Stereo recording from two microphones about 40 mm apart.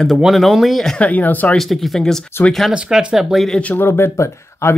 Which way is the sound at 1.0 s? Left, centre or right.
Left.